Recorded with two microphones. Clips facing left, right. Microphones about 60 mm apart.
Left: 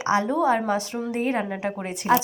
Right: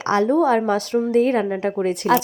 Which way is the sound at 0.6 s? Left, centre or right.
Right.